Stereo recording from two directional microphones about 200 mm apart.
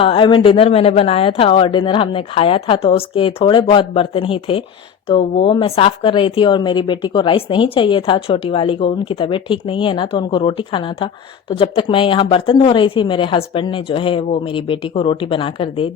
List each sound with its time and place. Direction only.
0.0 s a woman's voice: 25° left (ahead or behind)